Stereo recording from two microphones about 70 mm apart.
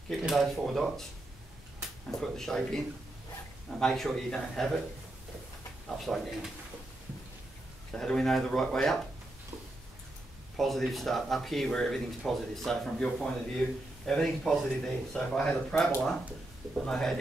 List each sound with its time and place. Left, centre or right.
0.3 s speech: centre
2.0 s speech: centre
3.8 s speech: centre
5.9 s speech: centre
7.9 s speech: centre
10.6 s speech: centre
15.1 s speech: centre